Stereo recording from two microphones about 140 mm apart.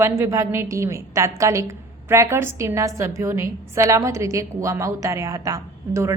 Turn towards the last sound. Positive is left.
turn(degrees=-20)  # may be behind; listen again after turning